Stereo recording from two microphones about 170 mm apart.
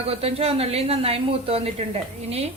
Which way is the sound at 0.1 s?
35° right (ahead or behind).